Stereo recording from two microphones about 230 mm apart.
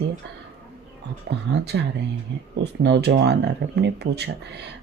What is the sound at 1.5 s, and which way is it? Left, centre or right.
Speech, right.